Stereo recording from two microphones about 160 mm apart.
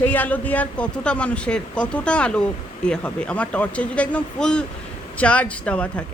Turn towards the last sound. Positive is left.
turn(degrees=5)  # may be behind; listen again after turning